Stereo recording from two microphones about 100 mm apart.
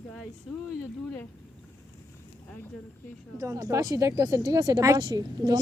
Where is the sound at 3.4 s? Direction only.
35° right (ahead or behind).